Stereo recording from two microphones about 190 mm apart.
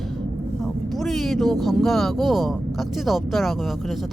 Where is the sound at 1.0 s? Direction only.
Centre (ahead or behind).